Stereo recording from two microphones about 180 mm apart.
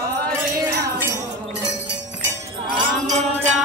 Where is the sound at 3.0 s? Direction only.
40° right (ahead or behind).